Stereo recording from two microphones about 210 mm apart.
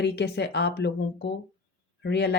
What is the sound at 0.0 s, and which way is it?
Speech, 50° left (ahead or behind).